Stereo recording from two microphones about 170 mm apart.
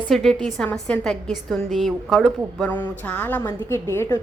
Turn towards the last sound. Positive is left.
turn(degrees=15)  # may be behind; listen again after turning